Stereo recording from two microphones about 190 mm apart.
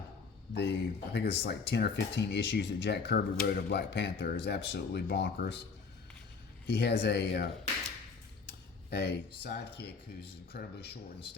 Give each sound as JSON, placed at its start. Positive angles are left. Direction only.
{"t": 0.5, "sound": "speech", "side_deg": 60}
{"t": 6.7, "sound": "speech", "side_deg": 60}
{"t": 8.9, "sound": "speech", "side_deg": 60}